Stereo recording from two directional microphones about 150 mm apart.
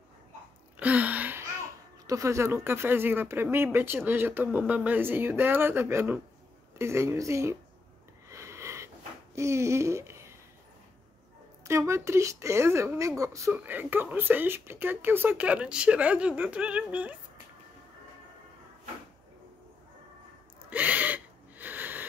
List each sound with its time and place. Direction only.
0.7 s a sound: 10° right (ahead or behind)
2.0 s speech: 20° right (ahead or behind)
8.3 s sniff: 20° right (ahead or behind)
11.6 s speech: 20° right (ahead or behind)
20.7 s gasp: 10° right (ahead or behind)